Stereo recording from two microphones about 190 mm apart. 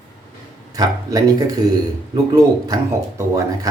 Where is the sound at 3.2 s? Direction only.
15° right (ahead or behind).